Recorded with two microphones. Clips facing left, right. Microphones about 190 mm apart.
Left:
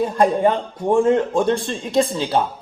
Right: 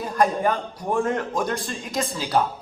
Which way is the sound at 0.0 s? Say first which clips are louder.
Left 5 dB; 25° left (ahead or behind).